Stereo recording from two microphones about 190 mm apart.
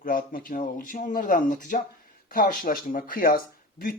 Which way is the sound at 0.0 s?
45° left (ahead or behind).